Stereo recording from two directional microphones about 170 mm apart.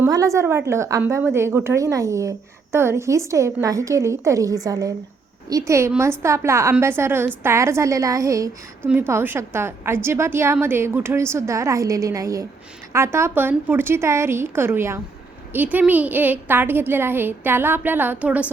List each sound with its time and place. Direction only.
0.0 s a woman's voice: 20° right (ahead or behind)